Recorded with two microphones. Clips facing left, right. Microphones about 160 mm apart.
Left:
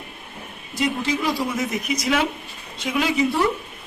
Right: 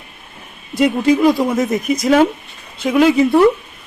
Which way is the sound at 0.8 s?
55° right (ahead or behind).